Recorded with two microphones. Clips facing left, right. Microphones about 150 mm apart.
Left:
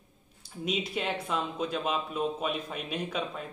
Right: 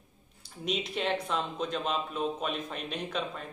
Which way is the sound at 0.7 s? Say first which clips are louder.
Right 1 dB; centre (ahead or behind).